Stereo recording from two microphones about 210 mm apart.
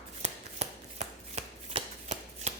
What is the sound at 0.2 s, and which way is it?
Chopping, 30° right (ahead or behind).